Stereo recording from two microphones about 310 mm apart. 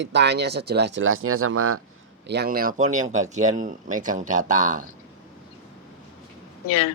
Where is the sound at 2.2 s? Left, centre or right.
Right.